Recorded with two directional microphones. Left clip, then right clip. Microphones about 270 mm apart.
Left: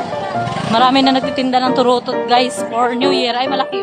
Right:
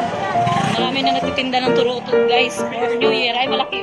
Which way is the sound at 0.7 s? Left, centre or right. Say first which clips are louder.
Left 6 dB; left.